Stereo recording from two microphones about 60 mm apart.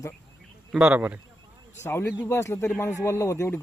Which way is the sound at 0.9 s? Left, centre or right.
Right.